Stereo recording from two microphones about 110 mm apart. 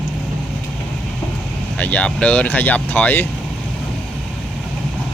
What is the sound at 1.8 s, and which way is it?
Speech, 15° left (ahead or behind).